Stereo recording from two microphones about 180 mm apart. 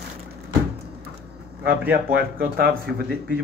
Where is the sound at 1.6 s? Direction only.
60° right (ahead or behind).